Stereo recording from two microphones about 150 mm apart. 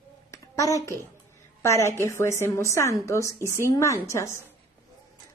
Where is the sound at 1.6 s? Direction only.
20° left (ahead or behind).